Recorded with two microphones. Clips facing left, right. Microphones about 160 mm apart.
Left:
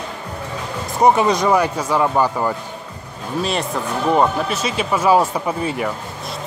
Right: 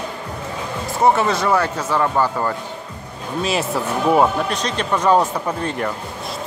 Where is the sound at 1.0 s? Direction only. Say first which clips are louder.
Left 2 dB; 15° left (ahead or behind).